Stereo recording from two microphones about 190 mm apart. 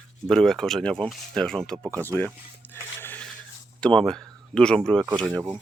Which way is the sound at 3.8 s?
5° left (ahead or behind).